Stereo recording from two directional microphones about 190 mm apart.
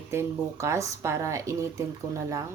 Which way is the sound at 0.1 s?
15° right (ahead or behind).